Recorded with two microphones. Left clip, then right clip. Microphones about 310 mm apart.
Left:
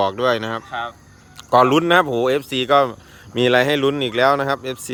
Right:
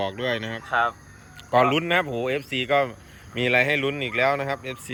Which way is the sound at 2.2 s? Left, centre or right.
Left.